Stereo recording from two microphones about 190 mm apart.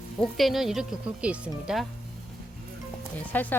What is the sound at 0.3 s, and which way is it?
Speech, centre (ahead or behind).